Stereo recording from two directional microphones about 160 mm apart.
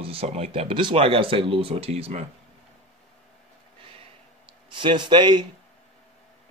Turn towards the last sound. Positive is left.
turn(degrees=-30)  # may be behind; listen again after turning